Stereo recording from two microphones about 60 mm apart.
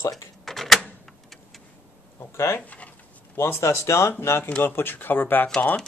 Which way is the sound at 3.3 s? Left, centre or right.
Left.